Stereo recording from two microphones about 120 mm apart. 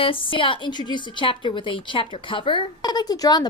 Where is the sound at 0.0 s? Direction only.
45° left (ahead or behind).